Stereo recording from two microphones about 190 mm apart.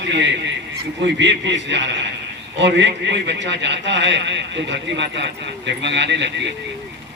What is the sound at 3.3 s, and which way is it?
A man's voice, 65° right (ahead or behind).